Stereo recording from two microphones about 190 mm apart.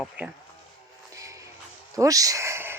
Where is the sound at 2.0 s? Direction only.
20° right (ahead or behind).